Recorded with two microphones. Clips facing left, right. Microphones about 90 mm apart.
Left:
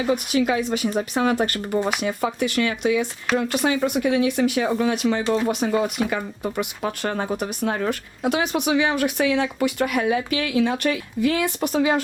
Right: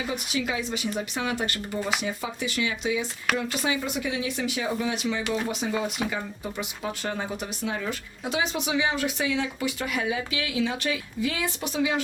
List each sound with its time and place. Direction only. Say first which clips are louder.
0.0 s speech: left 9 dB; 55° left (ahead or behind)